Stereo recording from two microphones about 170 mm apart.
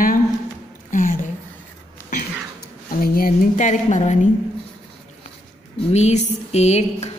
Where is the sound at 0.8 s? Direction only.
50° left (ahead or behind).